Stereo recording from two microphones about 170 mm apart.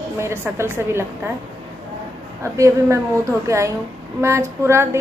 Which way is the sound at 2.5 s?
20° right (ahead or behind).